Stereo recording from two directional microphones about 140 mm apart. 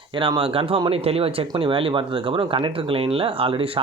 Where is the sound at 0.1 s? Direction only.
40° right (ahead or behind).